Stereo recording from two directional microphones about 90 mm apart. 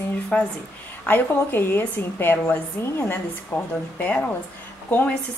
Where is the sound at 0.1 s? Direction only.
15° left (ahead or behind).